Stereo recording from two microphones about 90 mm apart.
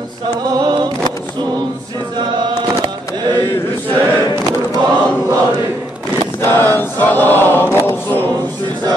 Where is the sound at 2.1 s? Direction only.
55° right (ahead or behind).